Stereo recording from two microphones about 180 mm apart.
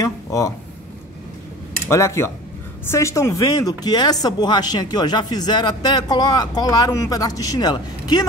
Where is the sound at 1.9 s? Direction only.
15° left (ahead or behind).